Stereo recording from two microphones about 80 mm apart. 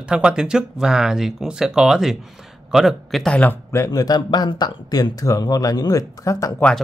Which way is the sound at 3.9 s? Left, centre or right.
Left.